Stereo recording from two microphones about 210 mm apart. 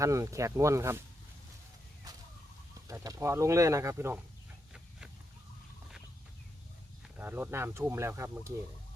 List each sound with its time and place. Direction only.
0.0 s speech: 15° right (ahead or behind)
2.1 s fowl: 15° right (ahead or behind)
2.8 s speech: 15° right (ahead or behind)
7.2 s speech: 10° right (ahead or behind)